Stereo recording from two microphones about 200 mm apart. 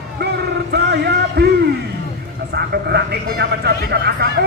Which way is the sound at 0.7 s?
55° right (ahead or behind).